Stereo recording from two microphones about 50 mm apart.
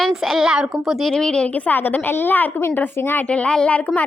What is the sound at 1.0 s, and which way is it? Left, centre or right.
Speech, centre.